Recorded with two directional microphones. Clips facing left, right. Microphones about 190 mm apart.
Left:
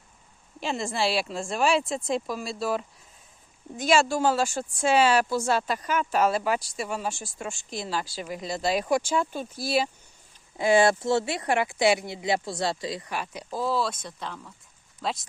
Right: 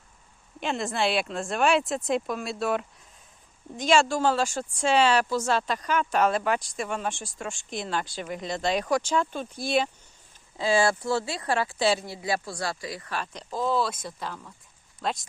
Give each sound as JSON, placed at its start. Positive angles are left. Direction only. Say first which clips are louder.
{"t": 0.6, "sound": "speech", "louder": "even", "side_deg": 0}
{"t": 10.6, "sound": "speech", "louder": "left 3 dB", "side_deg": 20}